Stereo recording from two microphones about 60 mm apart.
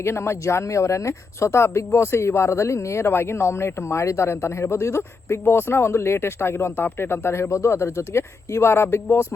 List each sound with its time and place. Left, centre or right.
0.0 s speech: left